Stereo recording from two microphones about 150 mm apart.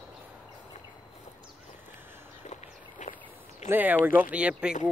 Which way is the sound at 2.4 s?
50° left (ahead or behind).